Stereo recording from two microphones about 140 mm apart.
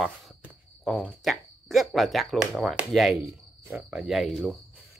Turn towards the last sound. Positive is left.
turn(degrees=0)  # may be behind; listen again after turning